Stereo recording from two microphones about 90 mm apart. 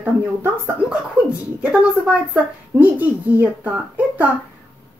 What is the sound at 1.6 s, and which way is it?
Speech, 10° right (ahead or behind).